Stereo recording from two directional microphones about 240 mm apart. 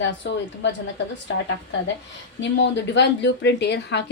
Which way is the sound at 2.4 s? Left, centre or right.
Left.